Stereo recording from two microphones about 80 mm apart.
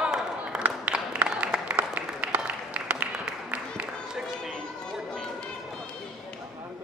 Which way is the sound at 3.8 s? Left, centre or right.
Centre.